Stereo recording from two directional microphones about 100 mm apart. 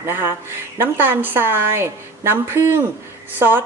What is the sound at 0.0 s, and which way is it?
A woman's voice, 25° right (ahead or behind).